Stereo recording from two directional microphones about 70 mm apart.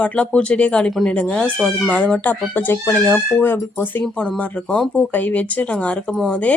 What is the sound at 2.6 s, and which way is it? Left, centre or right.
Speech, left.